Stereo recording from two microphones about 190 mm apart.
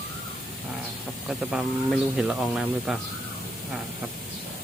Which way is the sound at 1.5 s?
Centre (ahead or behind).